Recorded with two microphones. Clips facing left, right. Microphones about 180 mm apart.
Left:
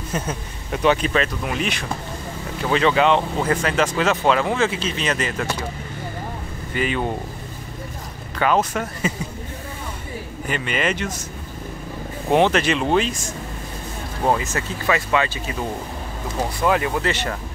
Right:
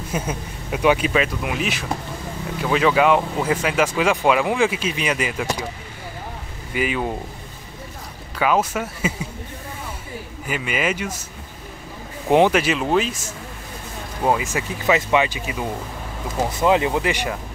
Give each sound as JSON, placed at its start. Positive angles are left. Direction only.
{"t": 0.1, "sound": "speech", "side_deg": -10}
{"t": 6.7, "sound": "speech", "side_deg": -5}
{"t": 8.4, "sound": "speech", "side_deg": -5}
{"t": 10.4, "sound": "speech", "side_deg": -5}
{"t": 12.3, "sound": "speech", "side_deg": -10}
{"t": 14.2, "sound": "speech", "side_deg": -10}